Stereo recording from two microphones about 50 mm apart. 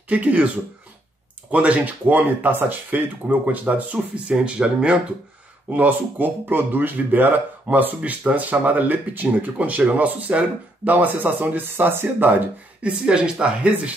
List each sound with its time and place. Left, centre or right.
0.1 s speech: right
1.5 s speech: right
5.7 s speech: right
10.9 s speech: right
12.8 s speech: centre